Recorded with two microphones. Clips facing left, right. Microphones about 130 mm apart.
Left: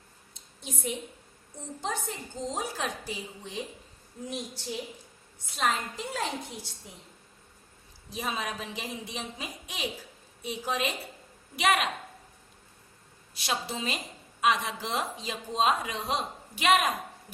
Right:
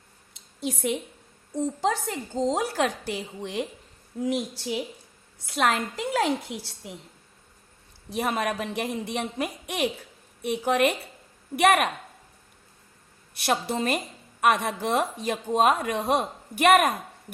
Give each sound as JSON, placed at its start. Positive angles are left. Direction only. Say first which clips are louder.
{"t": 0.3, "sound": "a sound", "louder": "right 11 dB", "side_deg": -90}
{"t": 1.5, "sound": "a woman's voice", "louder": "right 9 dB", "side_deg": -90}
{"t": 4.2, "sound": "a woman's voice", "louder": "right 10 dB", "side_deg": -90}
{"t": 8.1, "sound": "speech", "louder": "right 7 dB", "side_deg": -60}
{"t": 13.3, "sound": "speech", "louder": "right 7 dB", "side_deg": -60}